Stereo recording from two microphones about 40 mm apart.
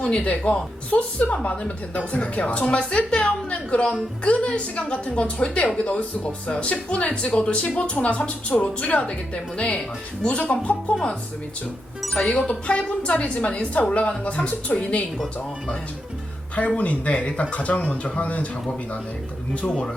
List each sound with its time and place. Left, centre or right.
0.0 s a woman's voice: left
12.0 s speech: centre
12.5 s a woman's voice: left
16.6 s a woman's voice: left